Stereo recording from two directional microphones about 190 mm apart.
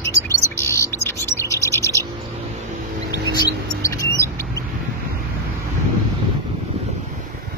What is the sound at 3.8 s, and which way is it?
Mouse, 15° left (ahead or behind).